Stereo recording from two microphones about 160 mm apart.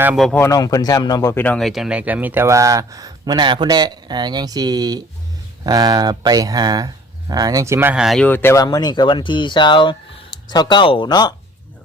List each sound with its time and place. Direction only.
0.0 s speech: 5° right (ahead or behind)
0.3 s speech: 20° left (ahead or behind); by 8.2 s 5° right (ahead or behind)
8.2 s speech: 15° left (ahead or behind)